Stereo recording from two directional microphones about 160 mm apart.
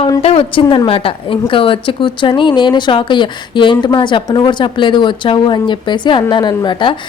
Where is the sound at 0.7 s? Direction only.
35° left (ahead or behind).